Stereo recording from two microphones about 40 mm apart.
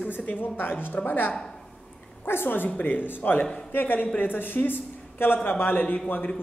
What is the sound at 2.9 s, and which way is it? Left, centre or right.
A man's voice, left.